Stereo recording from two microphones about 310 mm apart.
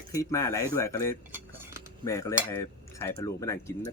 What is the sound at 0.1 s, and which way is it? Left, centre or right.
Cutlery, centre.